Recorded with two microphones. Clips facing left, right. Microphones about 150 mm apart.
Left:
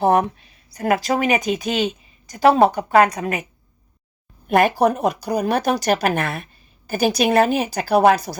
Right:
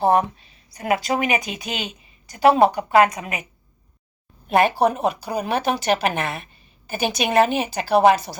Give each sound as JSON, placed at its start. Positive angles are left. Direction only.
{"t": 0.2, "sound": "a woman's voice", "side_deg": 50}
{"t": 4.4, "sound": "speech", "side_deg": 50}